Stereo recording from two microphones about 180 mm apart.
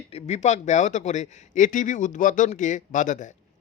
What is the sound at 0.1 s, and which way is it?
Speech, 35° left (ahead or behind).